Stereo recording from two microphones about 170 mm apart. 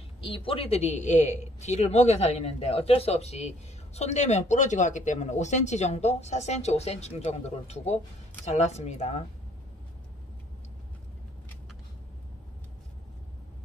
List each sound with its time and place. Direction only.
0.2 s a man's voice: 30° left (ahead or behind)